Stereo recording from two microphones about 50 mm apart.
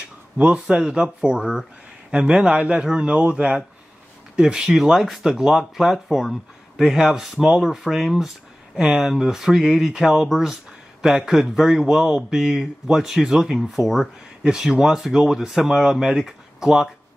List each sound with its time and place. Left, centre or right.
0.4 s a man's voice: right